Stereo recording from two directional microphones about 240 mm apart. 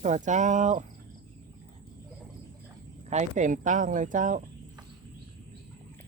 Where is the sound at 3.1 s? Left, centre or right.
Right.